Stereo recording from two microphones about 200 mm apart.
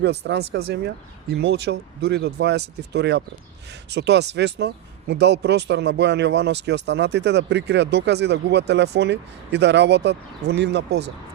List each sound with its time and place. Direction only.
0.0 s speech: 55° right (ahead or behind)